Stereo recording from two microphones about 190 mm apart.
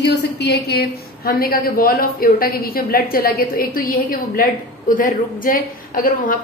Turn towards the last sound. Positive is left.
turn(degrees=45)  # may be behind; listen again after turning